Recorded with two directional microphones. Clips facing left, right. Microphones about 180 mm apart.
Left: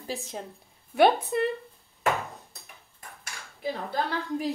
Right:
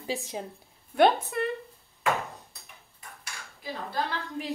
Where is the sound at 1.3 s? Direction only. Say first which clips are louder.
Left 4 dB; 25° left (ahead or behind).